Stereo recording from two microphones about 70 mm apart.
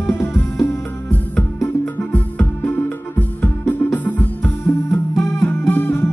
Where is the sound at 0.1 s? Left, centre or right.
Left.